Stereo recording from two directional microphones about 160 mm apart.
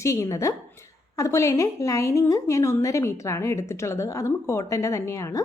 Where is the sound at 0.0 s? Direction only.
20° left (ahead or behind).